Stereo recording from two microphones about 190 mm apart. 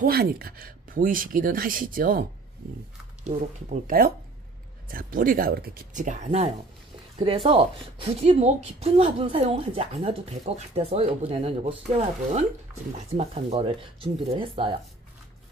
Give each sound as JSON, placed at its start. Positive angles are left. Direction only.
{"t": 0.0, "sound": "speech", "side_deg": -55}
{"t": 3.8, "sound": "a woman's voice", "side_deg": -50}